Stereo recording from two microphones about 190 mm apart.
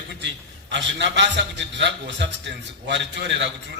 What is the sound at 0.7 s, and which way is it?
A man's voice, 65° right (ahead or behind).